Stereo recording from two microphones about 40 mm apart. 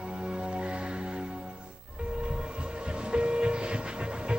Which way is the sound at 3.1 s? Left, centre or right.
Right.